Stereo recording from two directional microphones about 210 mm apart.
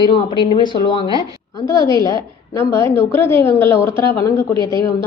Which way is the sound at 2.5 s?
10° left (ahead or behind).